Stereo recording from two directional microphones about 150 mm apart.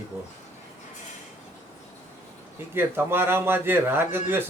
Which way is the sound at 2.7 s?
15° right (ahead or behind).